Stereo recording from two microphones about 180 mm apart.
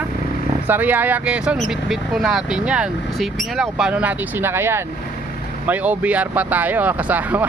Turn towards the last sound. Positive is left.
turn(degrees=-10)  # may be behind; listen again after turning